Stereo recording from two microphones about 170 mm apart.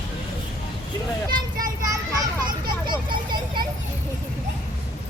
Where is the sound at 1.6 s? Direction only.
20° right (ahead or behind).